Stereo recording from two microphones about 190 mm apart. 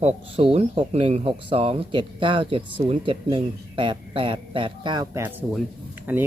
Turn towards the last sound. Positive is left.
turn(degrees=-10)  # may be behind; listen again after turning